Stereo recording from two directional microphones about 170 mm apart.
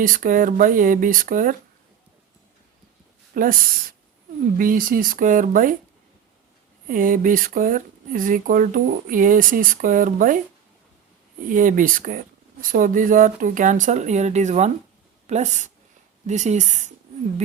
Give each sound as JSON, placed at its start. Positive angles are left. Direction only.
{"t": 0.0, "sound": "speech", "side_deg": -55}
{"t": 3.3, "sound": "speech", "side_deg": -55}
{"t": 6.8, "sound": "speech", "side_deg": -50}
{"t": 11.4, "sound": "speech", "side_deg": -50}
{"t": 16.2, "sound": "speech", "side_deg": -45}